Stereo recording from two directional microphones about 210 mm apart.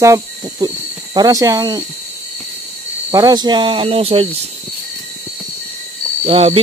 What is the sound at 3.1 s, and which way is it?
Speech, 20° right (ahead or behind).